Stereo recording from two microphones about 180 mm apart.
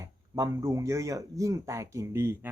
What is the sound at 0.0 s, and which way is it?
Speech, 20° right (ahead or behind).